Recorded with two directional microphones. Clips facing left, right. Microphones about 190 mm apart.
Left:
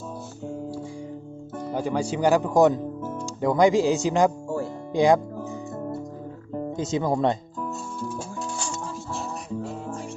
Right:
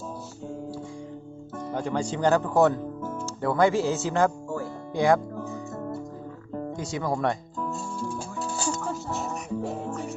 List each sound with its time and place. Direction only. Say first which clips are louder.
1.7 s speech: left 2 dB; 5° left (ahead or behind)
4.4 s music: left 3 dB; 25° left (ahead or behind)
6.5 s speech: left 5 dB; 20° left (ahead or behind)